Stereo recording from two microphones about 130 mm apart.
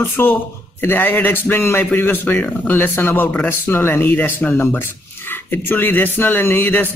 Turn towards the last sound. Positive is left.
turn(degrees=15)  # may be behind; listen again after turning